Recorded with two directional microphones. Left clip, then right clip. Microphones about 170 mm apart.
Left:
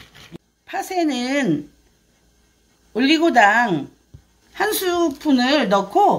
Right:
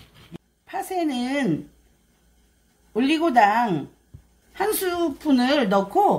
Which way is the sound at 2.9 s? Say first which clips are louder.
Left 4 dB; 20° left (ahead or behind).